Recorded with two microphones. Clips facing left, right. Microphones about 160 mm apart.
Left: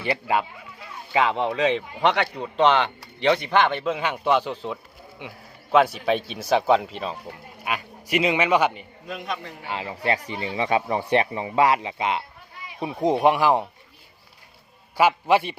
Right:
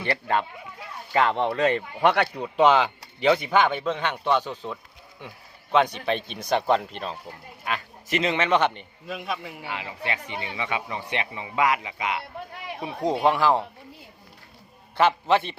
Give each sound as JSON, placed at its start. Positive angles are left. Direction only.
{"t": 1.1, "sound": "speech", "side_deg": 0}
{"t": 3.8, "sound": "a man's voice", "side_deg": 10}
{"t": 7.6, "sound": "a man's voice", "side_deg": 10}
{"t": 9.0, "sound": "speech", "side_deg": -5}
{"t": 9.6, "sound": "speech", "side_deg": 35}
{"t": 12.5, "sound": "a sound", "side_deg": -65}
{"t": 12.8, "sound": "a man's voice", "side_deg": 20}
{"t": 14.9, "sound": "a man's voice", "side_deg": 10}